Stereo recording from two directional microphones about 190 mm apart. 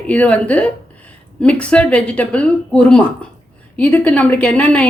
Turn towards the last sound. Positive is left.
turn(degrees=5)  # may be behind; listen again after turning